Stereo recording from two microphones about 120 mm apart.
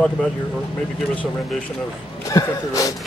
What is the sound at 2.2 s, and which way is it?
Speech, 25° left (ahead or behind).